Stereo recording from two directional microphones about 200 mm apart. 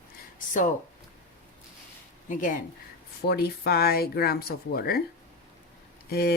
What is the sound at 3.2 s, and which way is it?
Speech, 50° left (ahead or behind).